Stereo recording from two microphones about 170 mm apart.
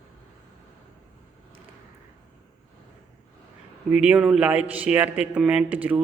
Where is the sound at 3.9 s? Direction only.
5° right (ahead or behind).